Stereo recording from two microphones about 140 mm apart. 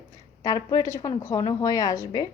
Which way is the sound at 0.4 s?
25° left (ahead or behind).